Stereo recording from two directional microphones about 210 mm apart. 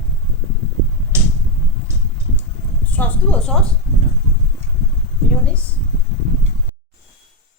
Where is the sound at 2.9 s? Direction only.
5° left (ahead or behind).